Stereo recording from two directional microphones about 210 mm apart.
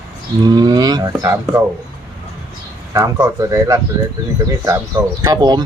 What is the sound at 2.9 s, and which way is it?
Speech, 15° right (ahead or behind).